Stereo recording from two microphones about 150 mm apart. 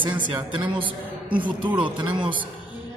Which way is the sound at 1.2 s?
35° right (ahead or behind).